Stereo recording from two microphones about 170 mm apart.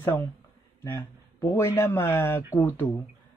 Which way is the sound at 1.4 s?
15° left (ahead or behind).